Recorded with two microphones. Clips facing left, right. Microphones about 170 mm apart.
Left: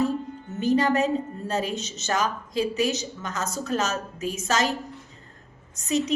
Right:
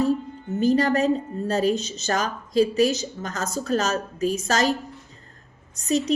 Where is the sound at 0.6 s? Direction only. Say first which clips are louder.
Right 2 dB; 35° right (ahead or behind).